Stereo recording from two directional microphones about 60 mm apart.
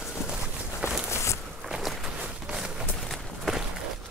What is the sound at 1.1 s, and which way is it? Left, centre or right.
Walk, left.